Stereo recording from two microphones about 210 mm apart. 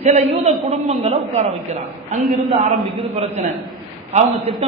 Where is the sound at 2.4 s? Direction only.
30° right (ahead or behind).